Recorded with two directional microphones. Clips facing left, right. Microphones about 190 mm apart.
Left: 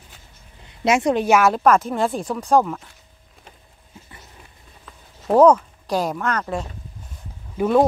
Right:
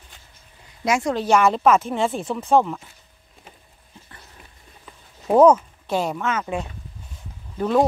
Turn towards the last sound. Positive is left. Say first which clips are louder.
# left 2 dB
turn(degrees=5)  # may be behind; listen again after turning